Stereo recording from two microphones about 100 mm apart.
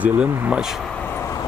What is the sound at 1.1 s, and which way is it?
Vehicle, 30° left (ahead or behind).